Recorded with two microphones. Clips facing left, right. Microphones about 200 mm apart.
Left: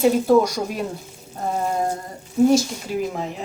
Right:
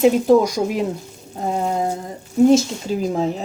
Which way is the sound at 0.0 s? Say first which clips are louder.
Right 2 dB; 15° right (ahead or behind).